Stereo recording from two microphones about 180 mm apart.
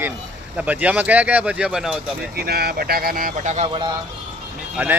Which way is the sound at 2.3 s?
60° right (ahead or behind).